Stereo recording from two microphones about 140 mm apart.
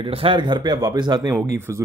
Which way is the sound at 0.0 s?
40° right (ahead or behind).